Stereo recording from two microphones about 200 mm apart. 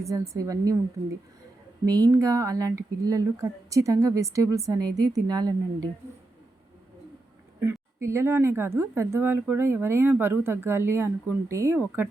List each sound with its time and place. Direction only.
0.0 s speech: 15° right (ahead or behind)
1.8 s speech: 20° right (ahead or behind)
7.6 s speech: 10° right (ahead or behind)